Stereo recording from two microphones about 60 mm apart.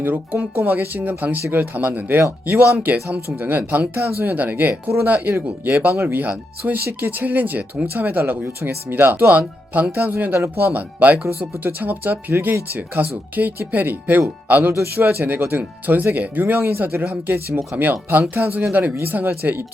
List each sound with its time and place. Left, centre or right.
0.0 s speech: right
0.3 s speech: right